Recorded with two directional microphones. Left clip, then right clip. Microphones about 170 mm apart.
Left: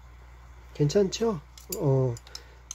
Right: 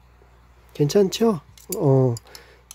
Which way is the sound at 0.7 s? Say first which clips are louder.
Right 6 dB; 45° right (ahead or behind).